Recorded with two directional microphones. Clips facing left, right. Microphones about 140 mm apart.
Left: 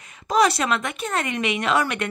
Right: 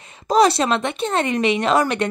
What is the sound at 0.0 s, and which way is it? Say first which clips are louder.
Speech: right 4 dB; 30° right (ahead or behind).